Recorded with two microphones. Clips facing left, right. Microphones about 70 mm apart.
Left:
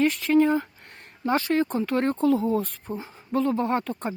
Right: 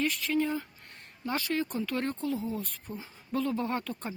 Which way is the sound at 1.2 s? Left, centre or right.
Left.